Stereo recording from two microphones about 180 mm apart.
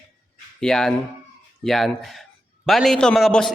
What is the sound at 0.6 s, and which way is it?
A man's voice, 5° left (ahead or behind).